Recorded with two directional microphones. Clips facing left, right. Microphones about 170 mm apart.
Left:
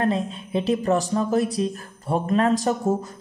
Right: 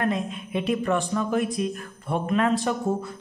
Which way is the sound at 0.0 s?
30° left (ahead or behind).